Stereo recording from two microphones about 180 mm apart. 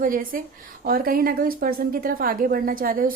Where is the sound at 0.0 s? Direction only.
50° right (ahead or behind).